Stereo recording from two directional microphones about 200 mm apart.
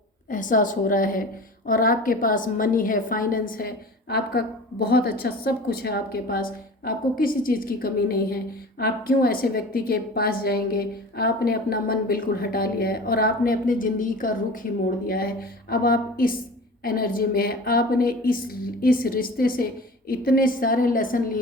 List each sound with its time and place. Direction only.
0.3 s a woman's voice: 40° left (ahead or behind)